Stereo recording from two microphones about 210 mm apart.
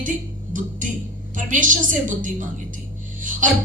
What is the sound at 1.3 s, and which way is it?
A woman's voice, 40° right (ahead or behind).